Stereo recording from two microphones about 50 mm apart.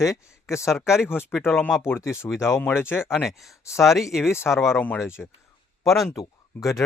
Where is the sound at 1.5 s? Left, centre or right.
Left.